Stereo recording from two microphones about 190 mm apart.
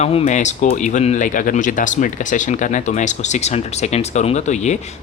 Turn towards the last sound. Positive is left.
turn(degrees=40)  # may be behind; listen again after turning